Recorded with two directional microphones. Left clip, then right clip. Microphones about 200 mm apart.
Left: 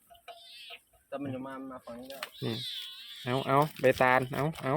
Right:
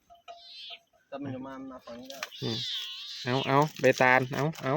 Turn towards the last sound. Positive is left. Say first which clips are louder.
# right 1 dB
turn(degrees=-15)  # may be behind; listen again after turning